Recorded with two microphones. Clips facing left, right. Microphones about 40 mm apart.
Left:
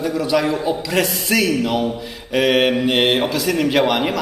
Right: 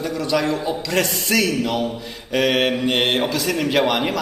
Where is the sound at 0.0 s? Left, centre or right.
Centre.